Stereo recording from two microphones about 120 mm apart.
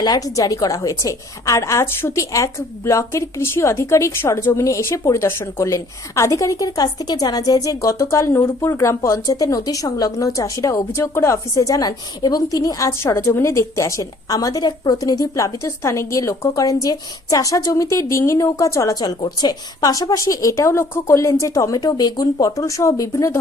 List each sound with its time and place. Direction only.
0.0 s speech: 30° left (ahead or behind)